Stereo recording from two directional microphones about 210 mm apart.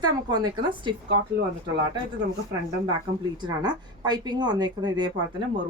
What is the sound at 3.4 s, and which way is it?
A woman's voice, 20° right (ahead or behind).